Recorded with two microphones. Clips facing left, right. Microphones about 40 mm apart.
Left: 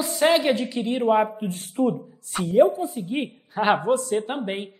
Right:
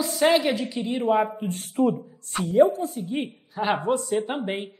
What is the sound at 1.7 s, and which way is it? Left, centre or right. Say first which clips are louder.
Speech: right 1 dB; centre.